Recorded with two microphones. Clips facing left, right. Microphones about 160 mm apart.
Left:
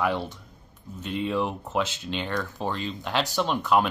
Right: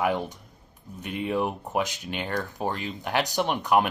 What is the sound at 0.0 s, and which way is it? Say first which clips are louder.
Speech: right 1 dB; 15° right (ahead or behind).